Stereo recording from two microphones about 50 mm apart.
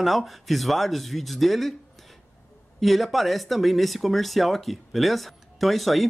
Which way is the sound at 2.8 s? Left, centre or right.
Centre.